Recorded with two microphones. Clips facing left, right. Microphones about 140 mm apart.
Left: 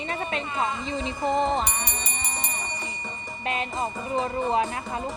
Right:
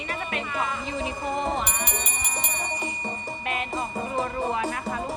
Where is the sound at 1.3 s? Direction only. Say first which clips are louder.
Left 5 dB; 30° left (ahead or behind).